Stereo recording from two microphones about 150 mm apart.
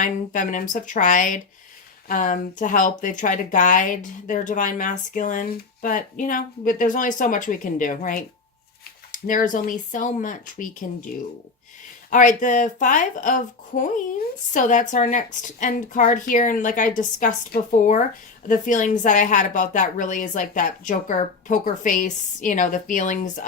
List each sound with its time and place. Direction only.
0.0 s speech: 60° left (ahead or behind)
12.1 s speech: 60° left (ahead or behind)